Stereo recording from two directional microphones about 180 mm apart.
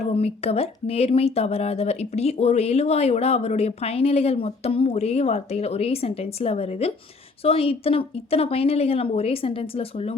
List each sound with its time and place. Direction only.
0.0 s speech: 35° left (ahead or behind)